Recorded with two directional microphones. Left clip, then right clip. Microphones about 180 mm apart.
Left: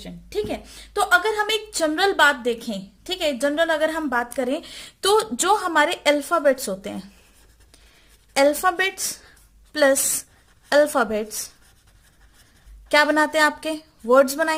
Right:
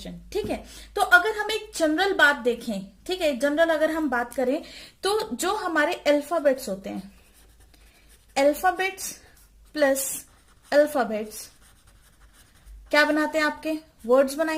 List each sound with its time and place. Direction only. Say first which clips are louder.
0.0 s a woman's voice: left 3 dB; 30° left (ahead or behind)
8.3 s a woman's voice: left 3 dB; 40° left (ahead or behind)
10.7 s a woman's voice: left 3 dB; 40° left (ahead or behind)
12.9 s a woman's voice: left 3 dB; 35° left (ahead or behind)